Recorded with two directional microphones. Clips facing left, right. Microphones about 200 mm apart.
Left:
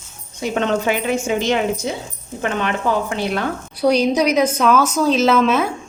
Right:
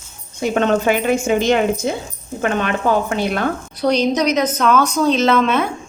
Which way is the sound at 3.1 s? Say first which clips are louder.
Right 2 dB; 50° right (ahead or behind).